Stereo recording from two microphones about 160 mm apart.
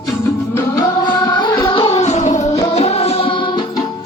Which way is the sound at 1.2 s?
25° left (ahead or behind).